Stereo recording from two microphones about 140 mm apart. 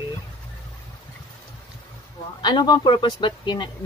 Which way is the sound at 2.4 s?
30° left (ahead or behind).